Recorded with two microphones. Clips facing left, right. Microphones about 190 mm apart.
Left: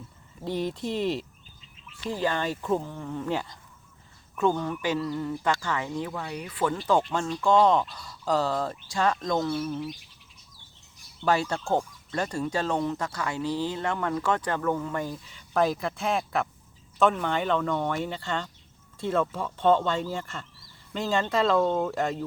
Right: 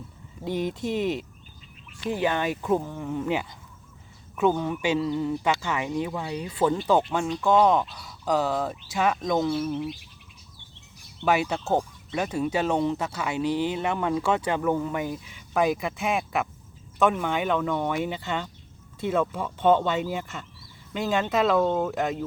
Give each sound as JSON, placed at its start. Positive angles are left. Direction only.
{"t": 0.4, "sound": "speech", "side_deg": -15}
{"t": 4.4, "sound": "speech", "side_deg": -15}
{"t": 6.8, "sound": "speech", "side_deg": -5}
{"t": 8.2, "sound": "speech", "side_deg": -15}
{"t": 8.5, "sound": "speech", "side_deg": -5}
{"t": 11.3, "sound": "speech", "side_deg": -15}
{"t": 12.1, "sound": "speech", "side_deg": -5}
{"t": 12.5, "sound": "speech", "side_deg": -15}
{"t": 16.1, "sound": "speech", "side_deg": 0}
{"t": 17.0, "sound": "speech", "side_deg": -10}
{"t": 19.1, "sound": "speech", "side_deg": 0}
{"t": 19.5, "sound": "speech", "side_deg": -15}